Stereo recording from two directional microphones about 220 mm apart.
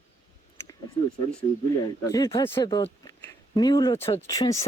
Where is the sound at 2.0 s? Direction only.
15° left (ahead or behind).